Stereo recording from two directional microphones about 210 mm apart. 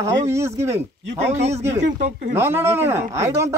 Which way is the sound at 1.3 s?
30° right (ahead or behind).